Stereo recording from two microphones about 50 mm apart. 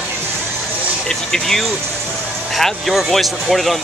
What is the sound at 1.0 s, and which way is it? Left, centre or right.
Speech, centre.